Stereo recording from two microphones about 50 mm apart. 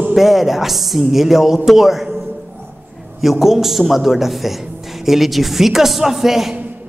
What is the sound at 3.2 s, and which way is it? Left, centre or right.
A man's voice, centre.